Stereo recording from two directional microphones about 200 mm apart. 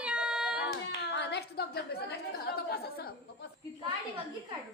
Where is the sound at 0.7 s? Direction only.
60° left (ahead or behind).